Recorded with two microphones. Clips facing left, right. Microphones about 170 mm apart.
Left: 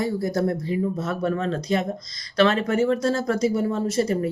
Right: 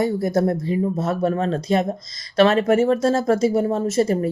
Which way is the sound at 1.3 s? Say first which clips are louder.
Right 3 dB; 50° right (ahead or behind).